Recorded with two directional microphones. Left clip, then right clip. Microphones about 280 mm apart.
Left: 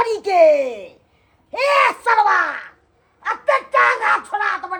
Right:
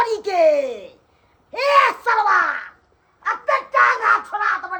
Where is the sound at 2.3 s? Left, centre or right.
Left.